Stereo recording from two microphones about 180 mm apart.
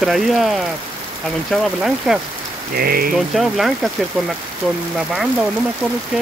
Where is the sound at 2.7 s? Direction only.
55° right (ahead or behind).